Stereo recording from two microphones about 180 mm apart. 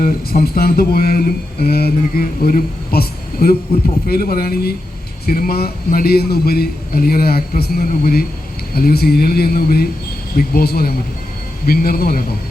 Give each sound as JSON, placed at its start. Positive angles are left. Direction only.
{"t": 0.0, "sound": "speech", "side_deg": 55}